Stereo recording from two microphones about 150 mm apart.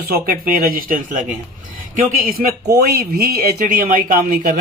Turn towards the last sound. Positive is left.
turn(degrees=-70)  # may be behind; listen again after turning